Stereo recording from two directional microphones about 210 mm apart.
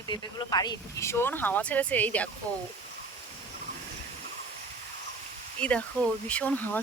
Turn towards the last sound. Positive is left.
turn(degrees=5)  # may be behind; listen again after turning